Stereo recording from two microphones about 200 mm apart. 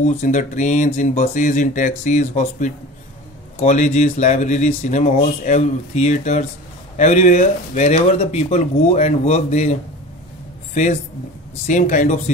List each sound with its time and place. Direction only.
0.0 s speech: 40° left (ahead or behind)